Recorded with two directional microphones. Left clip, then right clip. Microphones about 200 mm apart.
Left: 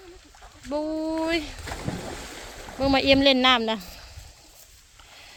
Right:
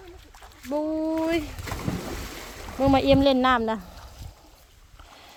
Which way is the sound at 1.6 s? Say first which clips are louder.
Right 1 dB; 65° right (ahead or behind).